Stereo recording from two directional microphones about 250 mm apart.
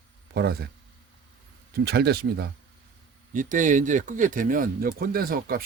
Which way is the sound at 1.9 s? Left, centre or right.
Right.